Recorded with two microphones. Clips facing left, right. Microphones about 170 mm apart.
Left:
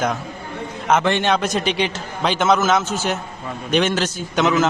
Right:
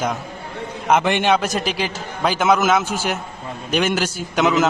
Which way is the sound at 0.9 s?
15° right (ahead or behind).